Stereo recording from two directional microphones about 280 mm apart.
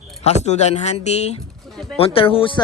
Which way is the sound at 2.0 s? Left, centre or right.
Centre.